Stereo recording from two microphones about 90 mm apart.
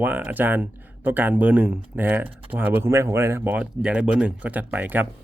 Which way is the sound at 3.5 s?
10° right (ahead or behind).